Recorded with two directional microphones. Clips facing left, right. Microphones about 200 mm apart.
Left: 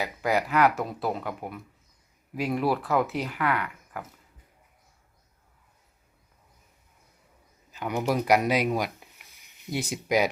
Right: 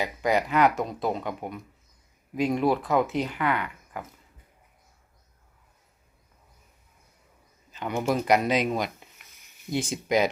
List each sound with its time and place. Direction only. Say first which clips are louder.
0.0 s speech: right 2 dB; 5° left (ahead or behind)
7.7 s speech: even; 10° left (ahead or behind)